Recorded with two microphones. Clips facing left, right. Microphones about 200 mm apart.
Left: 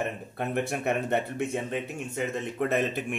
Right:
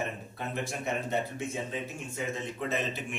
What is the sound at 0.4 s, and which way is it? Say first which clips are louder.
Speech: left 7 dB; 60° left (ahead or behind).